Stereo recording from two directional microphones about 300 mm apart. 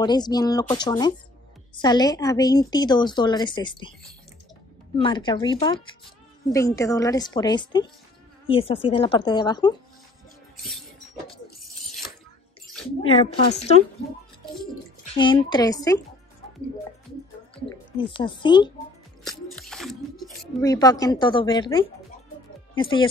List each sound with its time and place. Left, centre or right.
0.0 s a woman's voice: centre
4.9 s a woman's voice: centre
13.0 s a woman's voice: centre
15.1 s a woman's voice: centre
17.9 s a woman's voice: centre
19.2 s a sound: centre
20.6 s a woman's voice: centre